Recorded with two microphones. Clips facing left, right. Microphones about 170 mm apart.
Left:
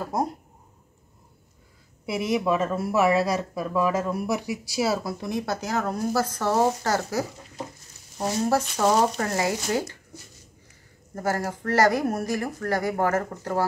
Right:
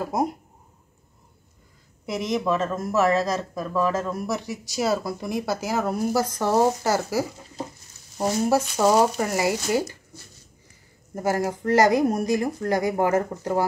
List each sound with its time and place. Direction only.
0.0 s speech: 10° right (ahead or behind)
2.0 s speech: 10° left (ahead or behind); by 9.9 s 10° right (ahead or behind)
11.1 s speech: 15° right (ahead or behind)